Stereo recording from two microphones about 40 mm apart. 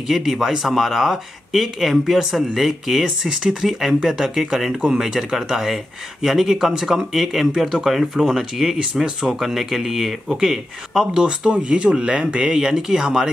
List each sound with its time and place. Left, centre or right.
0.1 s speech: centre
8.7 s speech: centre
11.2 s speech: right